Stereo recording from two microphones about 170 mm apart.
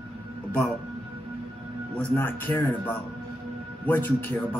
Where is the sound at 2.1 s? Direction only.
10° left (ahead or behind).